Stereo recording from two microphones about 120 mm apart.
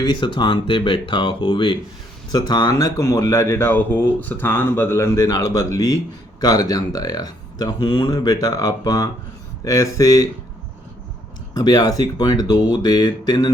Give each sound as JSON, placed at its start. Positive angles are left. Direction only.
{"t": 0.0, "sound": "speech", "side_deg": 40}
{"t": 11.5, "sound": "speech", "side_deg": 35}